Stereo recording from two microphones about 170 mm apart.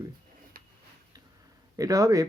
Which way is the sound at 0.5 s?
60° right (ahead or behind).